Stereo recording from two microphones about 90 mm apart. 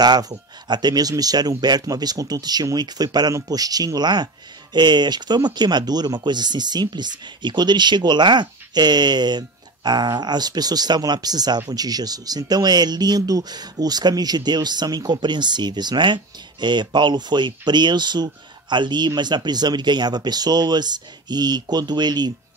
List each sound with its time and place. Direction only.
0.0 s speech: 50° right (ahead or behind)